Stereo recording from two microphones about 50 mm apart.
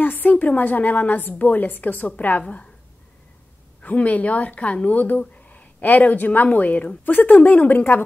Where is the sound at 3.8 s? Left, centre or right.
Left.